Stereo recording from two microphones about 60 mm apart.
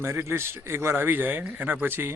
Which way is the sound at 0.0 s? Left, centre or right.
Right.